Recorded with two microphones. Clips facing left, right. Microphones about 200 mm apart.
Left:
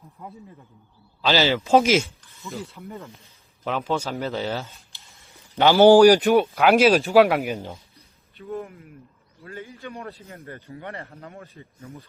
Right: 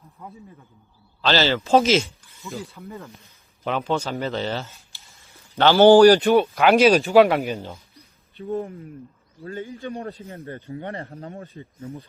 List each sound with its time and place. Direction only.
1.2 s speech: 10° left (ahead or behind)
2.0 s a sound: 15° right (ahead or behind)
2.5 s speech: centre (ahead or behind)
8.4 s a man's voice: 30° right (ahead or behind)